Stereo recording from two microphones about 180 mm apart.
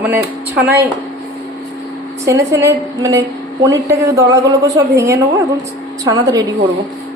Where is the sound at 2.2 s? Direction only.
15° right (ahead or behind).